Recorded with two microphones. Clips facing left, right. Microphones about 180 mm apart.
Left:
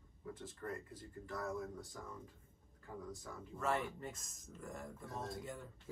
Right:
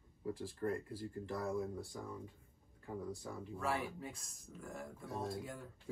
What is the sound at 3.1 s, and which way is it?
Speech, centre (ahead or behind).